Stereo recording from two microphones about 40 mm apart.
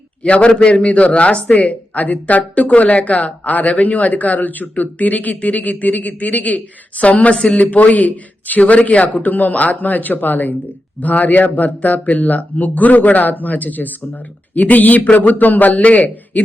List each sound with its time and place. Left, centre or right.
0.2 s speech: left